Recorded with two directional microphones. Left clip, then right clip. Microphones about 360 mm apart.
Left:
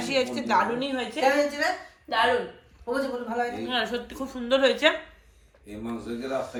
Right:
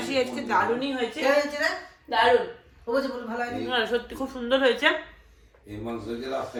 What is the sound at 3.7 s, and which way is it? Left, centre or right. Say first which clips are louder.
Speech: right 2 dB; centre.